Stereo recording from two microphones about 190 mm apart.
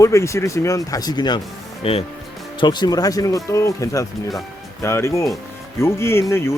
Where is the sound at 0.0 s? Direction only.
15° left (ahead or behind).